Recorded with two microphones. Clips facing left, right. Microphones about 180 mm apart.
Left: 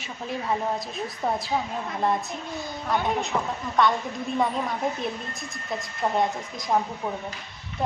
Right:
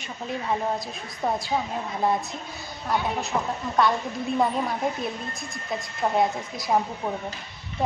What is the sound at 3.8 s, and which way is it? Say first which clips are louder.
Speech: even; 5° right (ahead or behind).